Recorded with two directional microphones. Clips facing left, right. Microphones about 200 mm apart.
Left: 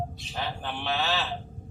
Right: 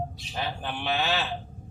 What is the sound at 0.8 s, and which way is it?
Speech, 5° right (ahead or behind).